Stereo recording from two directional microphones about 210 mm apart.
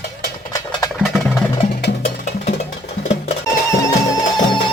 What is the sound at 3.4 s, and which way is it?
Music, 15° left (ahead or behind).